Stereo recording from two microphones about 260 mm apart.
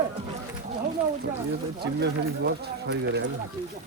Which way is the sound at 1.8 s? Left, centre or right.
Right.